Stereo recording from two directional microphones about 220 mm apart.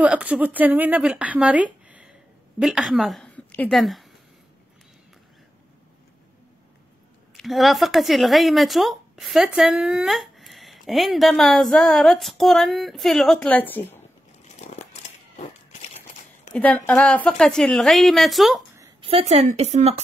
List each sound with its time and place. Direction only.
0.0 s a woman's voice: 5° right (ahead or behind)
7.3 s speech: centre (ahead or behind)
15.3 s a sound: 30° left (ahead or behind)
16.5 s speech: 5° left (ahead or behind)
18.8 s a woman's voice: 25° right (ahead or behind)